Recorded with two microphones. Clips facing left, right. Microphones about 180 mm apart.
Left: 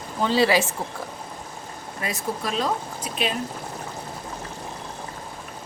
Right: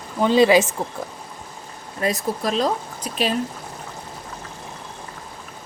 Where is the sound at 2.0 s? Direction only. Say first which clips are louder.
Right 6 dB; 40° right (ahead or behind).